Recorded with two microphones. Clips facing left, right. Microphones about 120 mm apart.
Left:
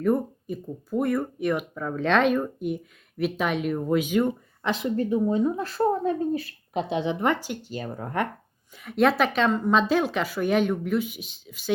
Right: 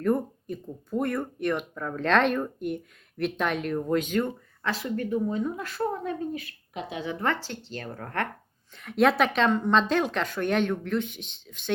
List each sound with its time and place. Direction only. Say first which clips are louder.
0.0 s speech: left 2 dB; 5° left (ahead or behind); by 5.5 s 20° left (ahead or behind)
5.5 s speech: left 6 dB; 35° left (ahead or behind); by 11.7 s 5° left (ahead or behind)